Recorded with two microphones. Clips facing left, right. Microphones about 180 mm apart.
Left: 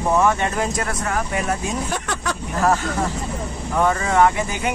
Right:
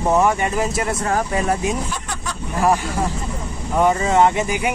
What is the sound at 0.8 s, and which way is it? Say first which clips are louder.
Speech: right 3 dB; 30° right (ahead or behind).